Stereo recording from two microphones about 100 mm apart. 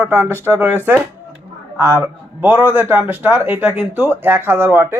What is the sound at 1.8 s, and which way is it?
Speech, 25° right (ahead or behind).